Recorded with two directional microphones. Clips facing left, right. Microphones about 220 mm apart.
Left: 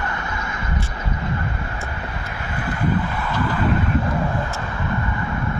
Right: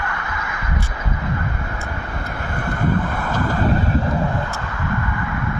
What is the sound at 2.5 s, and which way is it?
Vehicle, 50° right (ahead or behind).